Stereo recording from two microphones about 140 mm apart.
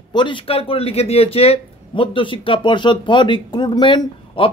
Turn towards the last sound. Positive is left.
turn(degrees=35)  # may be behind; listen again after turning